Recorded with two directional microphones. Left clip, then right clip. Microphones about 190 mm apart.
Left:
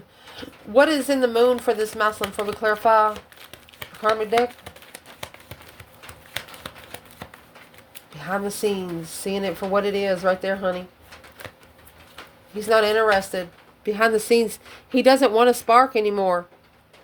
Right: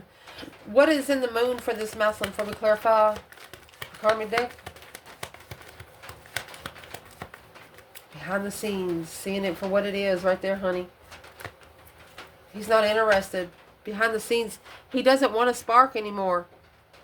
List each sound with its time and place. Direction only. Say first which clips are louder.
0.3 s speech: left 3 dB; 35° left (ahead or behind)
2.2 s speech: left 4 dB; 20° left (ahead or behind)
2.6 s speech: left 3 dB; 35° left (ahead or behind)
3.1 s crumpling: right 1 dB; 20° left (ahead or behind)
6.3 s a sound: left 1 dB; 20° left (ahead or behind)
8.2 s speech: left 5 dB; 35° left (ahead or behind)
12.5 s speech: left 3 dB; 35° left (ahead or behind)